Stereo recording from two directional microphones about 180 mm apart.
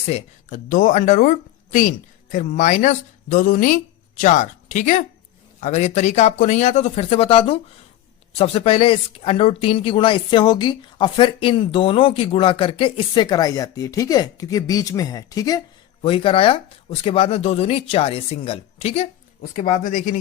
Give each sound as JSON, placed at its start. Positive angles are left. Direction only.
{"t": 0.1, "sound": "speech", "side_deg": 45}
{"t": 19.4, "sound": "speech", "side_deg": 45}